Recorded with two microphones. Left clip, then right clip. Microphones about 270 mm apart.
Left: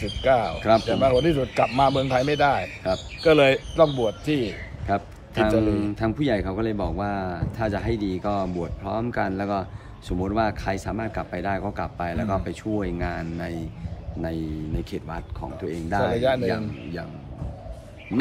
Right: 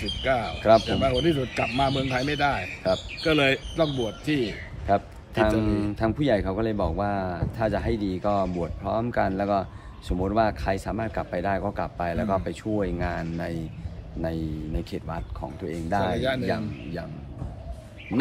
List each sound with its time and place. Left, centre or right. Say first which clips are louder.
0.2 s speech: left 6 dB; centre
0.6 s speech: right 1 dB; centre
0.8 s speech: left 4 dB; centre
4.8 s a sound: right 2 dB; centre
5.6 s speech: left 2 dB; centre
14.9 s speech: left 1 dB; centre
16.2 s speech: left 5 dB; centre
16.4 s speech: left 2 dB; centre